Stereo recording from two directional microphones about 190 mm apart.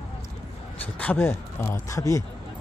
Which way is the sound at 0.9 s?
10° left (ahead or behind).